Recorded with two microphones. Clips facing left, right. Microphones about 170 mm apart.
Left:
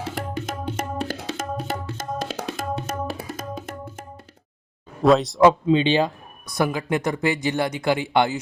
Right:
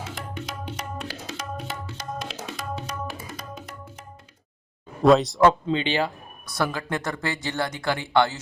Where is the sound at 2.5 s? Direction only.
50° left (ahead or behind).